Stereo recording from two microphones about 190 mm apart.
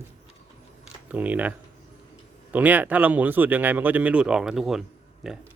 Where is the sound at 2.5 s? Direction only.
10° right (ahead or behind).